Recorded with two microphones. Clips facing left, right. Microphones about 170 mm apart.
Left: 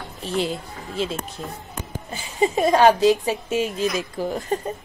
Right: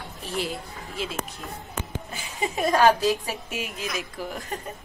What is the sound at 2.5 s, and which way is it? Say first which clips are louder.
A woman's voice: left 3 dB; 25° left (ahead or behind).